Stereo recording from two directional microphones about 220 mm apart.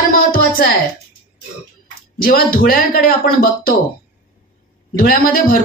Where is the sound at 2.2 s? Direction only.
40° left (ahead or behind).